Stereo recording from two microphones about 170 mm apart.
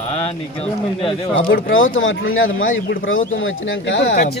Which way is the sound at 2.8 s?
55° left (ahead or behind).